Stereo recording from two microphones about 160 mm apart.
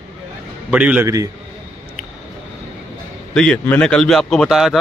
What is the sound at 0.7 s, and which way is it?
Speech, 10° right (ahead or behind).